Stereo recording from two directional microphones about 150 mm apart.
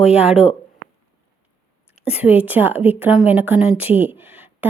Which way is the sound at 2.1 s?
10° right (ahead or behind).